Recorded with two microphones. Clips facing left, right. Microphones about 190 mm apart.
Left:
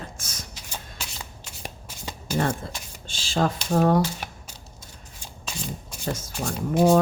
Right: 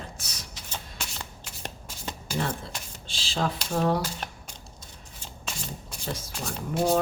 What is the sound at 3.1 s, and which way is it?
Speech, 45° left (ahead or behind).